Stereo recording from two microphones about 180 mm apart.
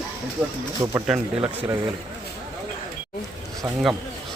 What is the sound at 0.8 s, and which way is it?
Speech, 20° right (ahead or behind).